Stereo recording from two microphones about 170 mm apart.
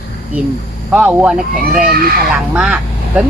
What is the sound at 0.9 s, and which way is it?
Speech, 5° right (ahead or behind).